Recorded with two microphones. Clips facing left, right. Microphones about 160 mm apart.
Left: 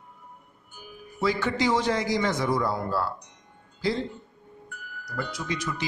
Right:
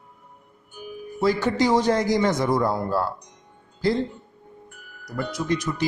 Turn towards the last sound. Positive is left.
turn(degrees=-45)  # may be behind; listen again after turning